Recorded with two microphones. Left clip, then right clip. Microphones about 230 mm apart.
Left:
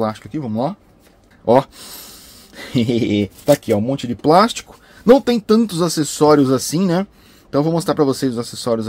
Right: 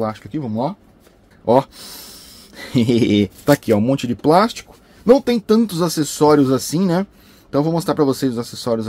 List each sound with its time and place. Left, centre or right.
0.0 s speech: centre
1.4 s a sound: centre
3.0 s speech: right
4.2 s speech: centre
4.5 s speech: centre